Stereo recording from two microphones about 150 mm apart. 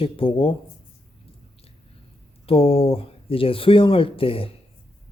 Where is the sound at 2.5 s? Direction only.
40° left (ahead or behind).